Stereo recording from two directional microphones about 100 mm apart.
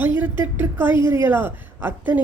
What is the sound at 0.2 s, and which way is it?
Speech, 20° right (ahead or behind).